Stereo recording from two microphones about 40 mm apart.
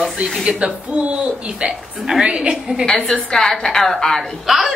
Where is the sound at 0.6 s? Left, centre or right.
Right.